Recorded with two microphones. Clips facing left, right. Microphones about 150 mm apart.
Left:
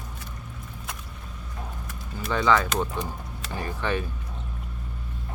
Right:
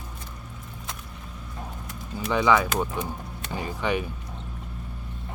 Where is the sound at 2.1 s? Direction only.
15° right (ahead or behind).